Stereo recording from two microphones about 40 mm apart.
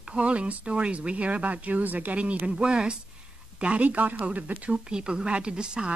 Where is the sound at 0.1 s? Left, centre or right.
Right.